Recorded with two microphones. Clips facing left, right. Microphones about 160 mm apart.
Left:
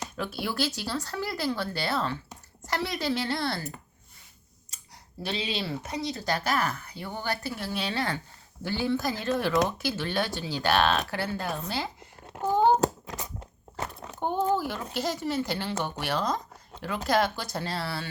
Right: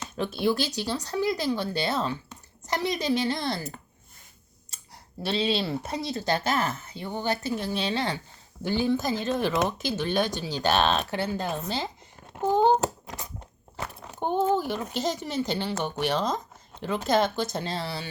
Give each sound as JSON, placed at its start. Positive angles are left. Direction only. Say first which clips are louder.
{"t": 0.2, "sound": "speech", "louder": "right 5 dB", "side_deg": -20}
{"t": 5.4, "sound": "speech", "louder": "right 7 dB", "side_deg": -30}
{"t": 14.5, "sound": "speech", "louder": "right 2 dB", "side_deg": -20}